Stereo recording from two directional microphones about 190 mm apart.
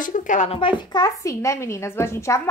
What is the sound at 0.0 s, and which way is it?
Speech, 40° left (ahead or behind).